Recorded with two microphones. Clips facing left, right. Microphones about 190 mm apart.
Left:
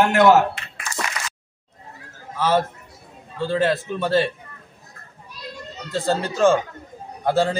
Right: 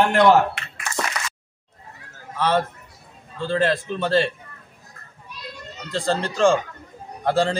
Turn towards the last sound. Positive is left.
turn(degrees=5)  # may be behind; listen again after turning